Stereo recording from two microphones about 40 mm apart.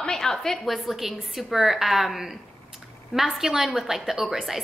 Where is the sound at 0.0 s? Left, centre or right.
Centre.